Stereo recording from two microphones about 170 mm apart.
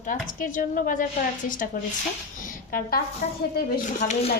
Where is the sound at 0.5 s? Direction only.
50° left (ahead or behind).